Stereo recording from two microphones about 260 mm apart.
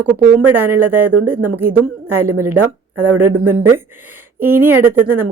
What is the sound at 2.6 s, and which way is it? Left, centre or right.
Speech, right.